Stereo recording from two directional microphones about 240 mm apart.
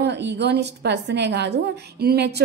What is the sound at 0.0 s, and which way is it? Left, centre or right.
A woman's voice, right.